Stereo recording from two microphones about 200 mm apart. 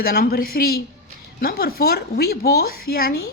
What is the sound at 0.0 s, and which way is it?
A woman's voice, 50° left (ahead or behind).